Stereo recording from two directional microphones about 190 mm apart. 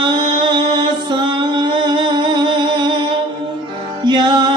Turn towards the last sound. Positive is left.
turn(degrees=-25)  # may be behind; listen again after turning